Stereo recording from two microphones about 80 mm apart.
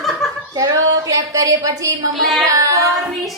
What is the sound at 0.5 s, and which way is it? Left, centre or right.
A woman's voice, right.